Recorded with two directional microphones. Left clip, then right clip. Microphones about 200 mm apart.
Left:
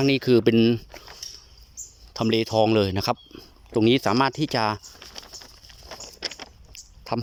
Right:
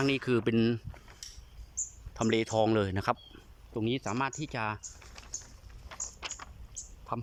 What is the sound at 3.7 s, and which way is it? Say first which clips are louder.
Speech: left 13 dB; 35° left (ahead or behind).